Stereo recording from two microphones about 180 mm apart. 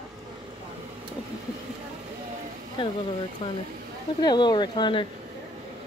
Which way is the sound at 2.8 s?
25° left (ahead or behind).